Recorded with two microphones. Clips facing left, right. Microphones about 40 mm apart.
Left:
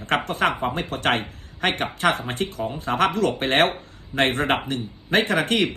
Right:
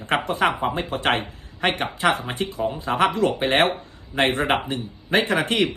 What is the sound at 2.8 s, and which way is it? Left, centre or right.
Speech, right.